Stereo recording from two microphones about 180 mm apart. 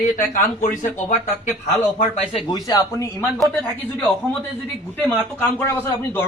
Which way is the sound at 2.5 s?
20° left (ahead or behind).